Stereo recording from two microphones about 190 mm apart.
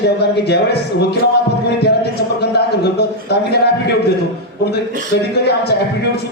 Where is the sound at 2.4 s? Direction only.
60° left (ahead or behind).